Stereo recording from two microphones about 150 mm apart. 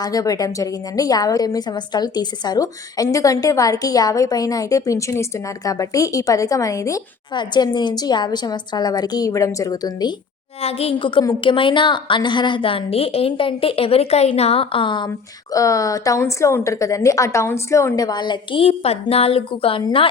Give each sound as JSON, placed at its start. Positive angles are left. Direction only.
{"t": 0.0, "sound": "a woman's voice", "side_deg": 25}
{"t": 10.6, "sound": "a woman's voice", "side_deg": 40}
{"t": 15.5, "sound": "a woman's voice", "side_deg": 20}